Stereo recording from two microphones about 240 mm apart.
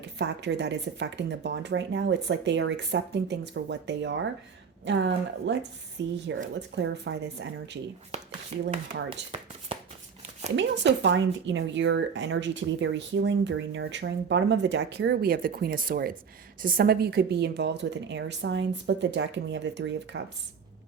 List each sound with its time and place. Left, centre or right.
0.0 s speech: right
10.5 s speech: right